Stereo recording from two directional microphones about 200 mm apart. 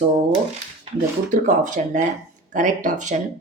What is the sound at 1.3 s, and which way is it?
Speech, 40° right (ahead or behind).